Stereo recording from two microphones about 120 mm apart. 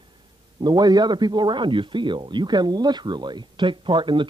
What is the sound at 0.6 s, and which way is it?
Speech, 35° right (ahead or behind).